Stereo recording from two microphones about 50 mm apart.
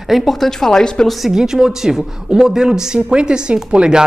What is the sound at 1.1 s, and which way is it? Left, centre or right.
Speech, centre.